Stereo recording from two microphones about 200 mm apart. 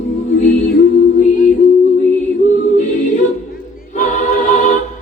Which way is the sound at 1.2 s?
40° left (ahead or behind).